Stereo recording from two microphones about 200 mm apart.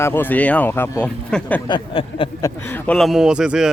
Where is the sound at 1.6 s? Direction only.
25° left (ahead or behind).